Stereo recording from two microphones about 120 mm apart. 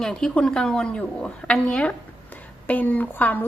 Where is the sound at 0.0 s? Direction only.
5° left (ahead or behind).